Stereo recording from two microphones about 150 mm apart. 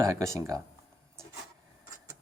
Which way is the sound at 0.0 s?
20° right (ahead or behind).